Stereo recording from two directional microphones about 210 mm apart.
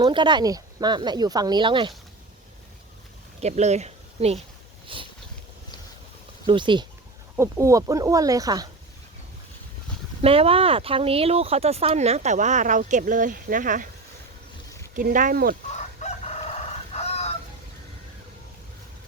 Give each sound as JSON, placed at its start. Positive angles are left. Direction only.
{"t": 0.0, "sound": "speech", "side_deg": -20}
{"t": 3.4, "sound": "speech", "side_deg": -30}
{"t": 4.9, "sound": "boat", "side_deg": -25}
{"t": 6.4, "sound": "speech", "side_deg": -20}
{"t": 10.2, "sound": "speech", "side_deg": -30}
{"t": 14.9, "sound": "speech", "side_deg": -40}
{"t": 16.0, "sound": "crowing", "side_deg": 30}
{"t": 16.9, "sound": "chicken", "side_deg": 30}